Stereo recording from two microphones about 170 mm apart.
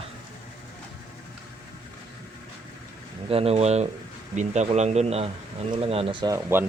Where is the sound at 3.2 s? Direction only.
35° right (ahead or behind).